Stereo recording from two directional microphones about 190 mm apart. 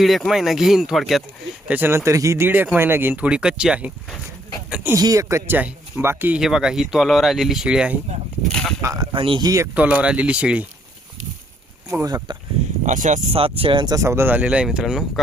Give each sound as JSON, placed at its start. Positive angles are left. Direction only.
{"t": 0.0, "sound": "speech", "side_deg": 0}
{"t": 8.8, "sound": "speech", "side_deg": -20}
{"t": 9.7, "sound": "speech", "side_deg": -5}
{"t": 11.9, "sound": "speech", "side_deg": -20}
{"t": 12.8, "sound": "speech", "side_deg": -40}